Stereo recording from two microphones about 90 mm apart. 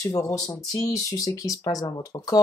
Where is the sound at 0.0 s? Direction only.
40° left (ahead or behind).